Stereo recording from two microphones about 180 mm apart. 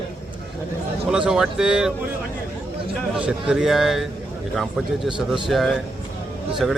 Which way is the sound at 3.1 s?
5° right (ahead or behind).